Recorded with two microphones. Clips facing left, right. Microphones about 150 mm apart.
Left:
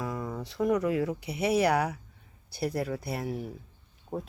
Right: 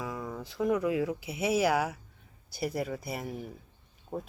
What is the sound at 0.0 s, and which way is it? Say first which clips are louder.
Speech: left 3 dB; centre (ahead or behind).